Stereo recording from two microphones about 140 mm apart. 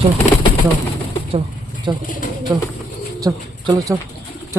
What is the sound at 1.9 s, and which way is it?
Speech, 30° right (ahead or behind).